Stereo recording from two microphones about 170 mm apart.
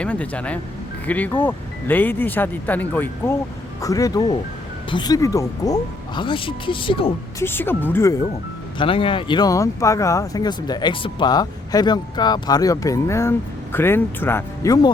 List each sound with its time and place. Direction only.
0.0 s speech: 10° left (ahead or behind); by 7.1 s 30° left (ahead or behind)
7.3 s speech: 15° left (ahead or behind)
8.8 s speech: 30° left (ahead or behind)